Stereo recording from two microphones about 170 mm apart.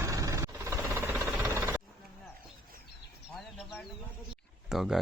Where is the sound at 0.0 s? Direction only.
20° right (ahead or behind).